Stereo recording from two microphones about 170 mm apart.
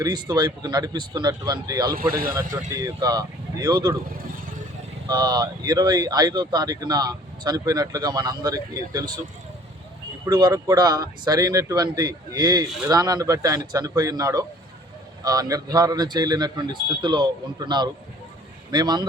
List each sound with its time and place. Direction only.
0.0 s speech: 25° right (ahead or behind)
5.0 s speech: 25° right (ahead or behind)
10.2 s speech: 25° right (ahead or behind)
12.6 s speech: centre (ahead or behind)
12.9 s speech: 25° right (ahead or behind)